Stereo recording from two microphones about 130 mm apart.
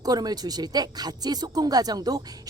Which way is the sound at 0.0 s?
30° right (ahead or behind).